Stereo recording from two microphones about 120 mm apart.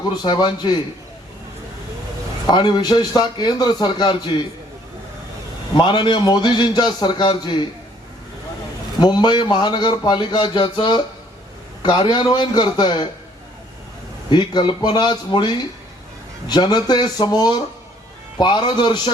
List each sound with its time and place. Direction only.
0.2 s a man's voice: 40° left (ahead or behind)
2.5 s a man's voice: 40° left (ahead or behind)
5.7 s a man's voice: 40° left (ahead or behind)
9.0 s a man's voice: 40° left (ahead or behind)
14.3 s a man's voice: 40° left (ahead or behind)